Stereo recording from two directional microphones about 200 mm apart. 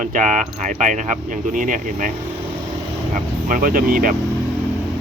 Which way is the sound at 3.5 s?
45° right (ahead or behind).